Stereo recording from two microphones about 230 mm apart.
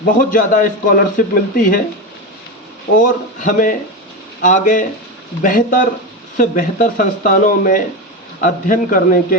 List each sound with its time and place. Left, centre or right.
0.2 s speech: left
3.0 s speech: left